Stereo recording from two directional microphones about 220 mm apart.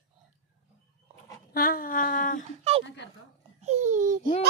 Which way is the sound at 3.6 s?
30° right (ahead or behind).